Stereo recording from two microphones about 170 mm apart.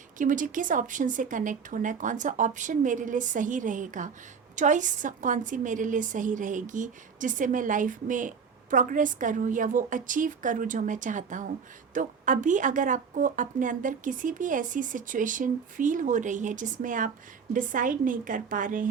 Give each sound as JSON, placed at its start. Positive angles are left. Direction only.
{"t": 0.2, "sound": "speech", "side_deg": -50}